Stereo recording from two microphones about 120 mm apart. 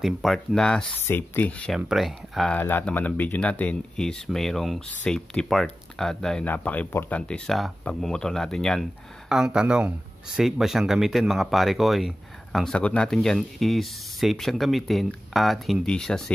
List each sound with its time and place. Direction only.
0.0 s speech: centre (ahead or behind)
0.9 s speech: 15° left (ahead or behind)
1.8 s speech: 5° right (ahead or behind)
2.8 s speech: 10° left (ahead or behind)
6.4 s speech: 15° left (ahead or behind)